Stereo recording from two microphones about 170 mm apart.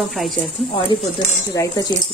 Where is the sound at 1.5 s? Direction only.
20° left (ahead or behind).